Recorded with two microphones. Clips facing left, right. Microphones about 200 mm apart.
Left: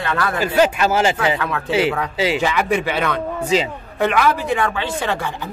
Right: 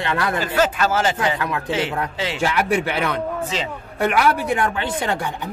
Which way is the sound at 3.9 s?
10° right (ahead or behind).